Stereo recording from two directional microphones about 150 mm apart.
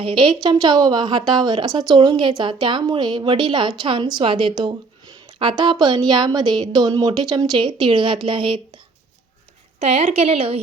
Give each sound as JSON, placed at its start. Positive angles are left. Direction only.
{"t": 0.0, "sound": "a woman's voice", "side_deg": -35}
{"t": 9.8, "sound": "a woman's voice", "side_deg": -50}